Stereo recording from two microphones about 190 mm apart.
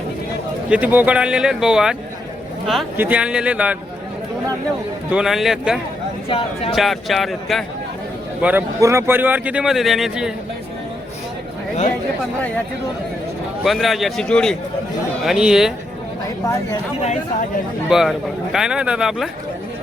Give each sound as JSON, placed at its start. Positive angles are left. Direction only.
{"t": 0.7, "sound": "speech", "side_deg": -10}
{"t": 3.0, "sound": "speech", "side_deg": -5}
{"t": 5.1, "sound": "speech", "side_deg": 0}
{"t": 6.2, "sound": "speech", "side_deg": 30}
{"t": 6.7, "sound": "speech", "side_deg": 0}
{"t": 13.7, "sound": "speech", "side_deg": 0}
{"t": 17.8, "sound": "speech", "side_deg": 0}